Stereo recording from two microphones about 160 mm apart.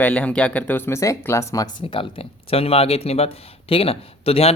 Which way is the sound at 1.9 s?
35° left (ahead or behind).